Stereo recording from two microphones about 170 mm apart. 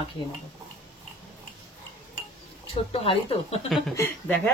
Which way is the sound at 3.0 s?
35° left (ahead or behind).